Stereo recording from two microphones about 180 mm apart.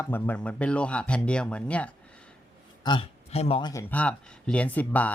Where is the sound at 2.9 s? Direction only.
30° left (ahead or behind).